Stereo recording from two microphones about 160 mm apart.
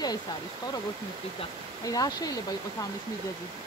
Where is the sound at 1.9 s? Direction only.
25° left (ahead or behind).